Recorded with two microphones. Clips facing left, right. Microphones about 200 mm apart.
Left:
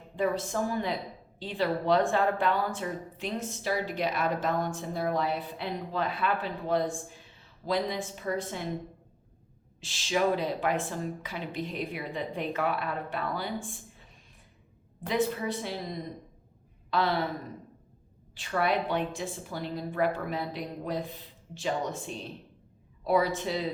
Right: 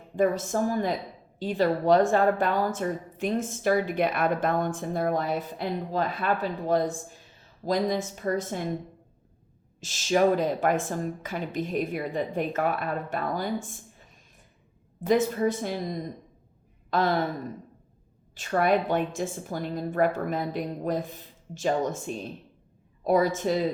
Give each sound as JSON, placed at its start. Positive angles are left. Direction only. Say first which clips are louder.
{"t": 0.2, "sound": "speech", "louder": "right 4 dB", "side_deg": -45}
{"t": 9.8, "sound": "speech", "louder": "right 5 dB", "side_deg": -45}
{"t": 15.0, "sound": "speech", "louder": "right 6 dB", "side_deg": -45}
{"t": 18.3, "sound": "speech", "louder": "right 5 dB", "side_deg": -45}